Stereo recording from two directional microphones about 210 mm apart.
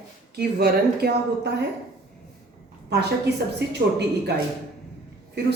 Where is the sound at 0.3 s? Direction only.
50° right (ahead or behind).